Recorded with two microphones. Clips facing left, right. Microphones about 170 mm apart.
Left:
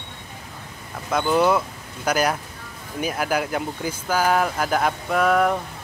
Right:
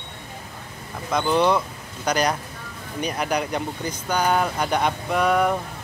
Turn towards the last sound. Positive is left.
turn(degrees=0)  # may be behind; listen again after turning